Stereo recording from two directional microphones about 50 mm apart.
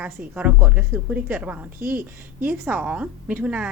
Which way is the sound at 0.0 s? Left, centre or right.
Right.